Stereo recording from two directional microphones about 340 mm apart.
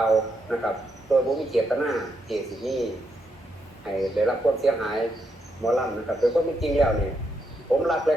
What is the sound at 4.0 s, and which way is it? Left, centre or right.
Speech, centre.